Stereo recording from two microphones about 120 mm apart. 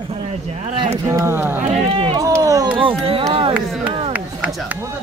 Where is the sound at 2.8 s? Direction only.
50° right (ahead or behind).